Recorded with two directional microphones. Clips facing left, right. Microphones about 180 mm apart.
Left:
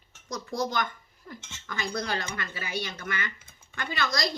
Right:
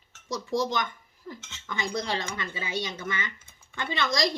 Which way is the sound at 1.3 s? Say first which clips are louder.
Right 2 dB; 20° right (ahead or behind).